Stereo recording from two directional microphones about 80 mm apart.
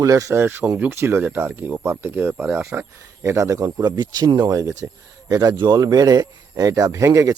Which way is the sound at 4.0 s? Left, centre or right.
Right.